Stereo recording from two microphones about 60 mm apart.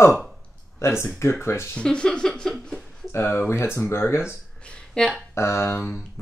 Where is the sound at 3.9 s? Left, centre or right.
Left.